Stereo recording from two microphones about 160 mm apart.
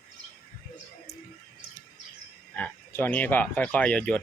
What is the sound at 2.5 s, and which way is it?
Speech, 10° left (ahead or behind).